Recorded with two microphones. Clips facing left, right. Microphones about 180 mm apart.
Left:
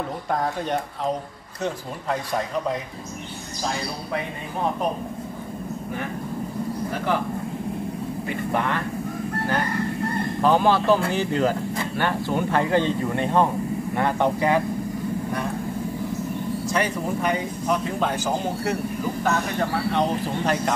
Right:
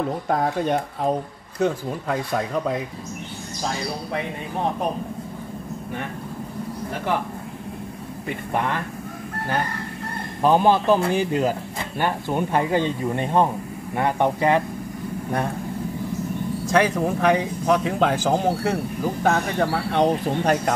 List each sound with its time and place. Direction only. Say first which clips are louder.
10.4 s speech: right 2 dB; 15° right (ahead or behind)
16.7 s speech: right 6 dB; 90° right
19.2 s speech: right 4 dB; 70° right (ahead or behind)